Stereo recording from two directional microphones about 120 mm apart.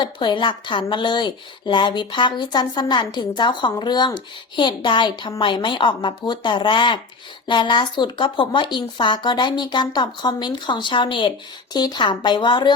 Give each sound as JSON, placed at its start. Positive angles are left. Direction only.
{"t": 0.0, "sound": "speech", "side_deg": 40}